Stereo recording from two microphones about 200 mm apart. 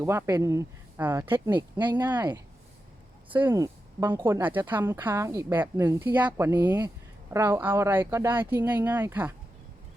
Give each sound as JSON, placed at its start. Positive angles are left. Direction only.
{"t": 0.0, "sound": "speech", "side_deg": -15}
{"t": 3.3, "sound": "speech", "side_deg": -15}